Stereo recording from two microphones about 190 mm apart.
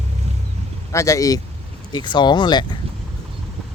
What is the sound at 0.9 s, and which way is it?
Speech, 15° left (ahead or behind).